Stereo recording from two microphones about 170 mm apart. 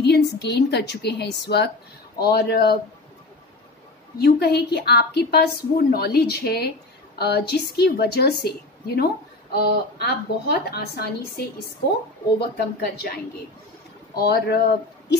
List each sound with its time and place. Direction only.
0.0 s a woman's voice: 75° left (ahead or behind)
2.1 s a woman's voice: 70° left (ahead or behind)
4.2 s a woman's voice: 70° left (ahead or behind)